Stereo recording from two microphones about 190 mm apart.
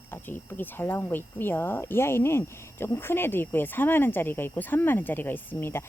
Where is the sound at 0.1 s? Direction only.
10° left (ahead or behind).